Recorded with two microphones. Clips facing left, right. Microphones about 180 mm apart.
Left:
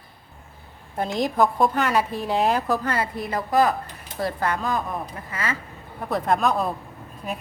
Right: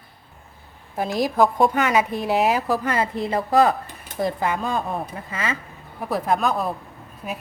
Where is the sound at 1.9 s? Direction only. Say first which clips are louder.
Right 2 dB; 15° right (ahead or behind).